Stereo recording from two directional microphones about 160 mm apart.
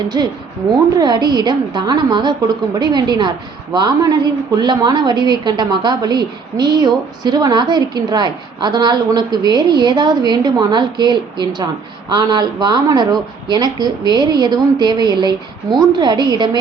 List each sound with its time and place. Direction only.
0.1 s a woman's voice: 25° right (ahead or behind)